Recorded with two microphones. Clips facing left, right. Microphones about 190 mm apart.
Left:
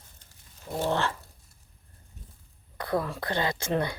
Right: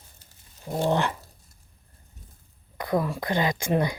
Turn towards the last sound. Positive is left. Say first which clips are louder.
# right 3 dB
turn(degrees=-15)  # may be behind; listen again after turning